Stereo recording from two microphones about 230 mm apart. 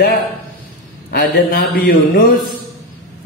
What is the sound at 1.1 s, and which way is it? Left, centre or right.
Speech, left.